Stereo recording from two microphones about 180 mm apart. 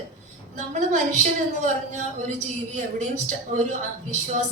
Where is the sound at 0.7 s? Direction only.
45° right (ahead or behind).